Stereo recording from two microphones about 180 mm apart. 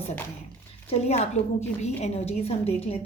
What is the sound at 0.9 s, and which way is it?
A woman's voice, 35° left (ahead or behind).